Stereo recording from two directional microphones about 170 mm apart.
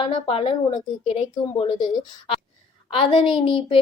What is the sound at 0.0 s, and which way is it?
Speech, 35° left (ahead or behind).